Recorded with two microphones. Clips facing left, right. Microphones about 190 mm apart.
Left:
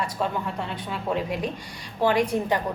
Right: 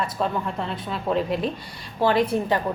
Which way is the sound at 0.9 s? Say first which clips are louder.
Right 4 dB; 15° left (ahead or behind).